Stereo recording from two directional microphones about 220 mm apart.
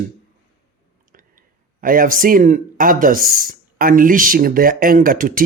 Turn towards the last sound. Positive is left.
turn(degrees=-40)  # may be behind; listen again after turning